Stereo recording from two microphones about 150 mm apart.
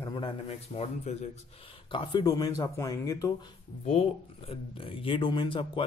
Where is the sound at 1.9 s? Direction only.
30° left (ahead or behind).